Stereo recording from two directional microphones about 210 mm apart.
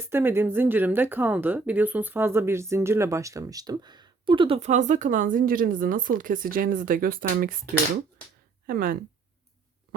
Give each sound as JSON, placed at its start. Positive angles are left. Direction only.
{"t": 0.1, "sound": "speech", "side_deg": -10}
{"t": 8.6, "sound": "speech", "side_deg": -45}